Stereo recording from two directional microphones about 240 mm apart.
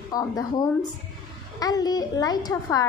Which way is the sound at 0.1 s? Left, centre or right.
Centre.